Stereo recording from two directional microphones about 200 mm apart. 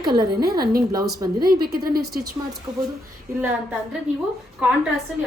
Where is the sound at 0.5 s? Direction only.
50° right (ahead or behind).